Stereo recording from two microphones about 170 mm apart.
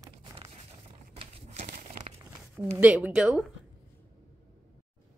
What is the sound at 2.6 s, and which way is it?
Speech, 10° right (ahead or behind).